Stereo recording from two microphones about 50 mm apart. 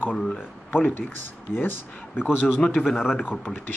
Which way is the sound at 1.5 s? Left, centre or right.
Centre.